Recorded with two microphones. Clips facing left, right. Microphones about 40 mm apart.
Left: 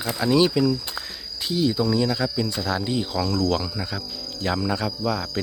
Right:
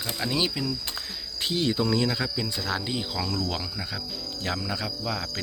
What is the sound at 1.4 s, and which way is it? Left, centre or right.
Speech, right.